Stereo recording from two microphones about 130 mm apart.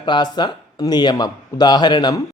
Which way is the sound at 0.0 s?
35° left (ahead or behind).